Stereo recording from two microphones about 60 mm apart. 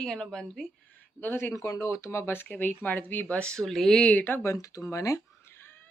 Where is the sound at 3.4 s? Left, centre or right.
Centre.